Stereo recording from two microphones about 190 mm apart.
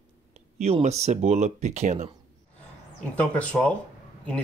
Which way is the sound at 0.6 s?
35° right (ahead or behind).